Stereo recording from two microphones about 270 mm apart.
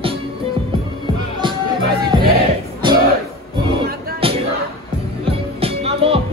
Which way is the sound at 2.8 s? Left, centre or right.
Centre.